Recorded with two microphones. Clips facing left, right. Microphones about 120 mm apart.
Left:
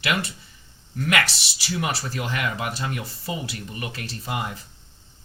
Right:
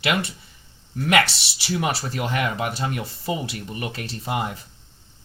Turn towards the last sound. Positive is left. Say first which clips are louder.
# right 3 dB
turn(degrees=-30)  # may be behind; listen again after turning